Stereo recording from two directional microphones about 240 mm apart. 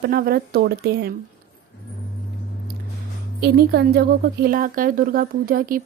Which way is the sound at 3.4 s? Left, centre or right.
Right.